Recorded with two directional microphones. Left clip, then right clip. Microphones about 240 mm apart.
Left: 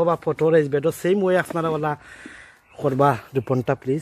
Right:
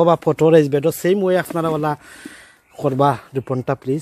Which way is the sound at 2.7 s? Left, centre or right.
Centre.